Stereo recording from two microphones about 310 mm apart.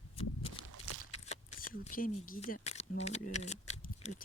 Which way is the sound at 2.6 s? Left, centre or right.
Left.